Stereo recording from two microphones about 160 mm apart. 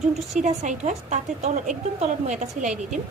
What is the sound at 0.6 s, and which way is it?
A woman's voice, 50° right (ahead or behind).